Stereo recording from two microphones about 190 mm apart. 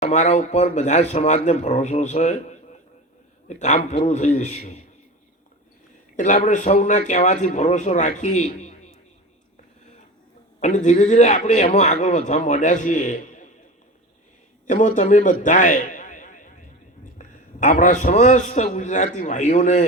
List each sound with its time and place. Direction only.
0.0 s a man's voice: 35° left (ahead or behind)
3.5 s a man's voice: 40° left (ahead or behind)
6.1 s a man's voice: 40° left (ahead or behind)
10.6 s a man's voice: 40° left (ahead or behind)
14.7 s a man's voice: 40° left (ahead or behind)